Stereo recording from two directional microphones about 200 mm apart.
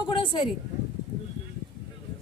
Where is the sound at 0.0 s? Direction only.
25° left (ahead or behind).